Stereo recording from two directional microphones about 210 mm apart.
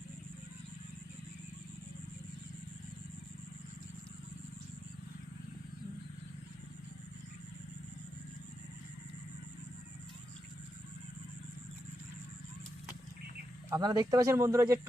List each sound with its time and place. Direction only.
13.7 s speech: 20° right (ahead or behind)